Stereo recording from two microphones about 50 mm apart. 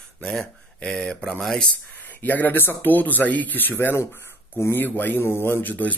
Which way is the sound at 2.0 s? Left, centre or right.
Left.